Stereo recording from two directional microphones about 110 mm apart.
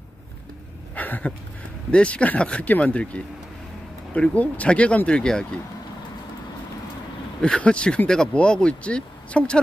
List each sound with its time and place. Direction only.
0.9 s a sound: 15° left (ahead or behind)
1.9 s speech: 10° left (ahead or behind)
7.4 s speech: 10° left (ahead or behind)